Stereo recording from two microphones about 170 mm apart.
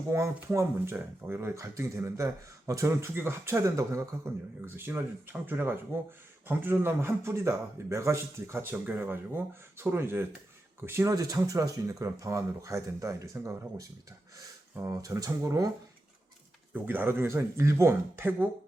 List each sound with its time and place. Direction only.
0.1 s speech: 15° right (ahead or behind)
16.7 s speech: 10° right (ahead or behind)